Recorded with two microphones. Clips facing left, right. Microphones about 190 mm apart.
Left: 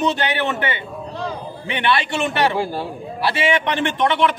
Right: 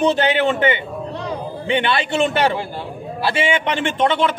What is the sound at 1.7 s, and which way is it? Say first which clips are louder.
Speech: right 2 dB; 25° right (ahead or behind).